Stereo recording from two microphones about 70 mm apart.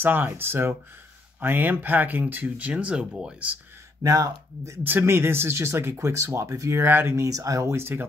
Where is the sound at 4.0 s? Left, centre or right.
Right.